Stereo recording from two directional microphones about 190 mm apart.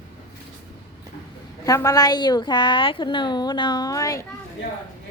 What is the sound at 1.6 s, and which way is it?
A woman's voice, 15° left (ahead or behind).